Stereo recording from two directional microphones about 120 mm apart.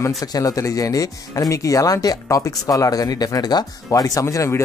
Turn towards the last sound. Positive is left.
turn(degrees=25)  # may be behind; listen again after turning